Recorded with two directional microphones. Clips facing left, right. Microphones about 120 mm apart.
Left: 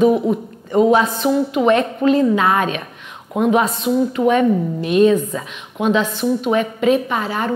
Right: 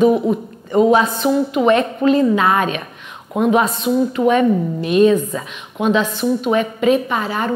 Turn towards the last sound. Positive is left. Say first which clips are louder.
# right 1 dB
turn(degrees=-25)  # may be behind; listen again after turning